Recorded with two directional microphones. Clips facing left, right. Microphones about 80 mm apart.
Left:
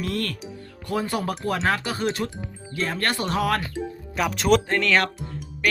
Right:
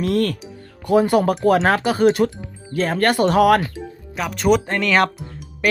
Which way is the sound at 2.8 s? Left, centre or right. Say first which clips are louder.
Right 7 dB; right.